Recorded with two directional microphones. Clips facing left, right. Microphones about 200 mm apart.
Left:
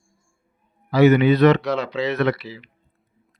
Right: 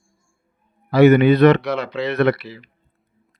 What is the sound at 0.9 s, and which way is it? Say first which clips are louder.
A man's voice: right 3 dB; 60° right (ahead or behind).